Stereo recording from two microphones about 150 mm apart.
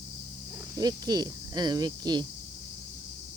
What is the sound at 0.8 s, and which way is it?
Speech, 25° right (ahead or behind).